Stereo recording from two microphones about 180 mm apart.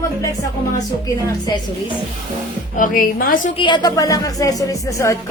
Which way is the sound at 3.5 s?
25° left (ahead or behind).